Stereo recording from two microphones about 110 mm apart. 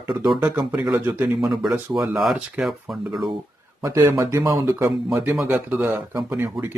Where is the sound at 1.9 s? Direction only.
Centre (ahead or behind).